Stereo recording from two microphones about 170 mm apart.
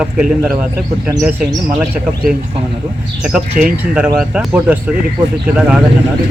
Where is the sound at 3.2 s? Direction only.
5° right (ahead or behind).